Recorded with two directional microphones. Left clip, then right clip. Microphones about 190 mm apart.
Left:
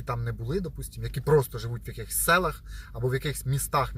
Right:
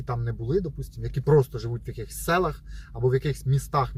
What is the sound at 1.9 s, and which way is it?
Speech, 10° left (ahead or behind).